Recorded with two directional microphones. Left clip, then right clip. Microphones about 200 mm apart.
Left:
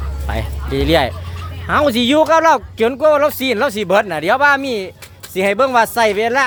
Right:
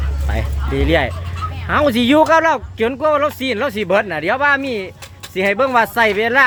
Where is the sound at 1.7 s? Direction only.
10° left (ahead or behind).